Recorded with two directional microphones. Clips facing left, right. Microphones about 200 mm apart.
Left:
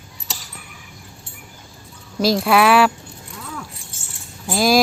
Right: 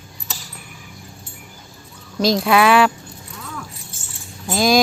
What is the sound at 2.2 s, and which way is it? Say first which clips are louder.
Speech: even; 5° left (ahead or behind).